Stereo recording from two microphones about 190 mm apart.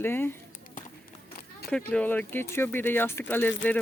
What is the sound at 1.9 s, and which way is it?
Speech, 10° left (ahead or behind).